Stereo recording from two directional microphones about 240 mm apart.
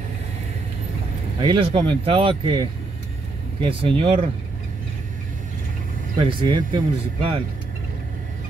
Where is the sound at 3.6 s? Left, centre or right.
Right.